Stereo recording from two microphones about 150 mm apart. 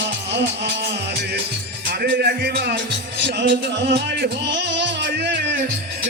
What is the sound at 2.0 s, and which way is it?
Music, 90° right.